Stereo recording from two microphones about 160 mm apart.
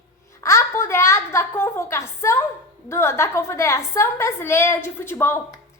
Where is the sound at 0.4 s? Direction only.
15° left (ahead or behind).